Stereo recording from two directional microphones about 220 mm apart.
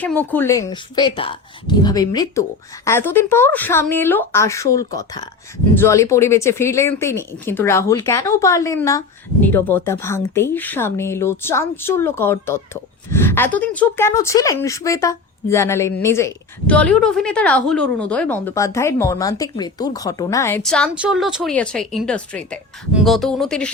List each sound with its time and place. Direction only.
0.0 s speech: 5° left (ahead or behind)